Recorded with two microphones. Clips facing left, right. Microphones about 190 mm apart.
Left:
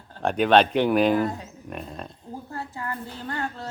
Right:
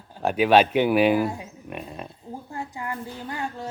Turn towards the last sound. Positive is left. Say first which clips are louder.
# even
turn(degrees=-15)  # may be behind; listen again after turning